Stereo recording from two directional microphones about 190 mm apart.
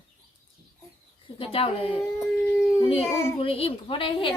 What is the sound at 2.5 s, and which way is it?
Speech, 10° left (ahead or behind).